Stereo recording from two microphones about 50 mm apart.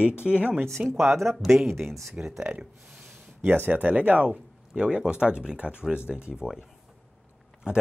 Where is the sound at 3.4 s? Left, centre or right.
Right.